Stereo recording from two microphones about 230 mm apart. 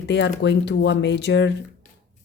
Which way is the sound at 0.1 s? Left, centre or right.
Left.